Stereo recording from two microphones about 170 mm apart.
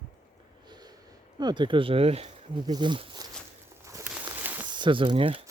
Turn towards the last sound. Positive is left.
turn(degrees=-30)  # may be behind; listen again after turning